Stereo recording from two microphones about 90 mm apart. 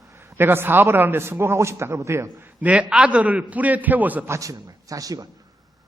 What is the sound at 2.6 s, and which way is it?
A man's voice, 15° right (ahead or behind).